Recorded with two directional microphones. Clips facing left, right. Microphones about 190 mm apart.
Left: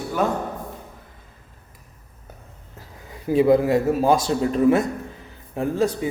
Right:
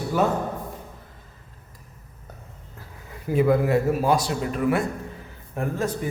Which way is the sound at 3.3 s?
20° left (ahead or behind).